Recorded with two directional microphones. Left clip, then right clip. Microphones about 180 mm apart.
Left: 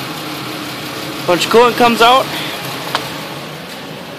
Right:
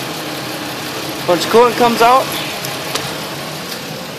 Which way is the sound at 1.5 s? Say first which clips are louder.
Left 1 dB; 25° left (ahead or behind).